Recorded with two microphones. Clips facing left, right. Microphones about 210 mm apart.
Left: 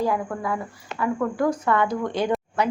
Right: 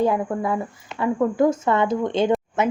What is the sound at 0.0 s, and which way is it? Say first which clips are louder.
A woman's voice: right 4 dB; 25° right (ahead or behind).